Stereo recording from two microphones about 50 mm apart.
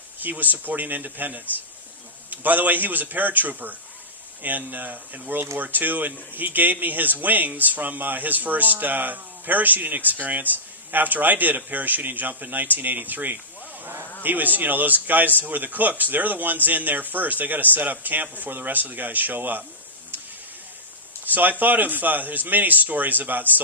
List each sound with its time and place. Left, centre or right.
0.2 s speech: right
21.3 s a sound: right
21.6 s speech: right